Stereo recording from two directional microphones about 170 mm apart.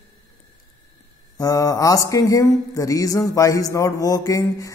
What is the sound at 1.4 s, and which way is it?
Mantra, 20° left (ahead or behind).